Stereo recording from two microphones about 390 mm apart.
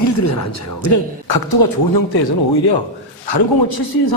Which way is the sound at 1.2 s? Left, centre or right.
Left.